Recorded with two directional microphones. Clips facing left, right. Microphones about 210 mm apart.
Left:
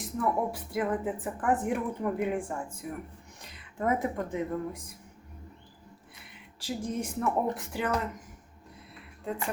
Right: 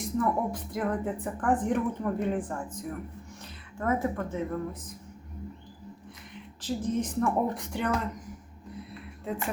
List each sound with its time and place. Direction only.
0.0 s speech: 5° left (ahead or behind)
6.6 s speech: 10° left (ahead or behind)